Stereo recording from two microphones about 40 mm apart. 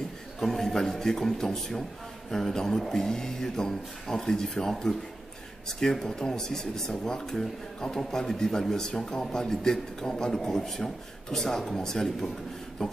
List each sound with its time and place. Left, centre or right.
0.4 s speech: centre